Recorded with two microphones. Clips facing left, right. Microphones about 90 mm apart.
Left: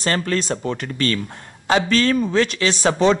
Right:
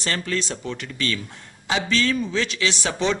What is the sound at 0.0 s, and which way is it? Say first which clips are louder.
Speech: left 5 dB; 45° left (ahead or behind).